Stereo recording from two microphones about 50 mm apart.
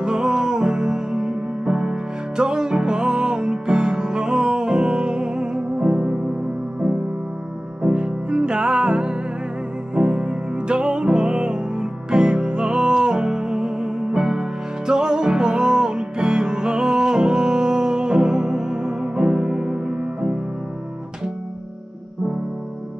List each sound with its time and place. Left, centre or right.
0.0 s music: centre
7.9 s music: centre